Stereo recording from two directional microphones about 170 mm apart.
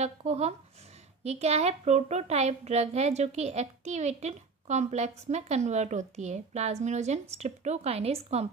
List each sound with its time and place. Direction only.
0.0 s a woman's voice: 40° right (ahead or behind)